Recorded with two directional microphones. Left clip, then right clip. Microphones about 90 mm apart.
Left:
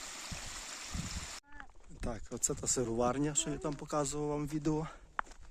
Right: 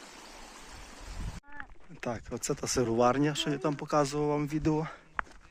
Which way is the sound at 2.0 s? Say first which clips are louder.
Right 4 dB; 10° left (ahead or behind).